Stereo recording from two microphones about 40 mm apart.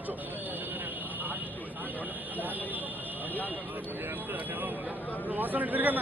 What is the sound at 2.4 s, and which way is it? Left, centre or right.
Speech, right.